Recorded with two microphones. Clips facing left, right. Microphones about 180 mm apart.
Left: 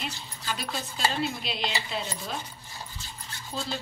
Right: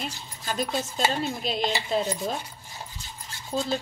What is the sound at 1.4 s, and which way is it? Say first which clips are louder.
Speech: right 5 dB; 45° right (ahead or behind).